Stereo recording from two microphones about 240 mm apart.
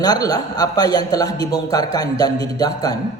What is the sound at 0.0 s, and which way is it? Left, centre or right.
A man's voice, centre.